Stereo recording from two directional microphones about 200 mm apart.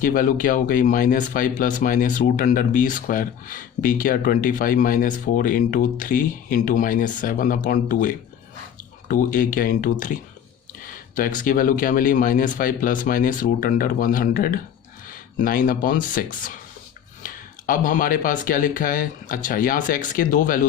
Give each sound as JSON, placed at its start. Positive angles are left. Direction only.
{"t": 0.0, "sound": "speech", "side_deg": 45}